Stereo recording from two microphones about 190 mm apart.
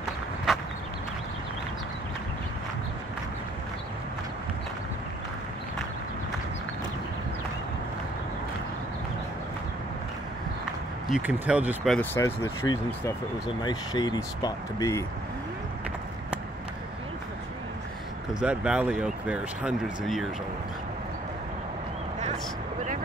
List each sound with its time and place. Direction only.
11.1 s speech: 5° right (ahead or behind); by 15.0 s 15° left (ahead or behind)
18.4 s speech: 5° right (ahead or behind)